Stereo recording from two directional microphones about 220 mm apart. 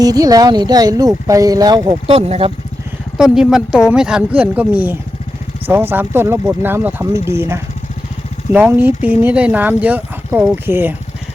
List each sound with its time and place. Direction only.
0.0 s speech: 15° right (ahead or behind)
3.2 s a woman's voice: centre (ahead or behind)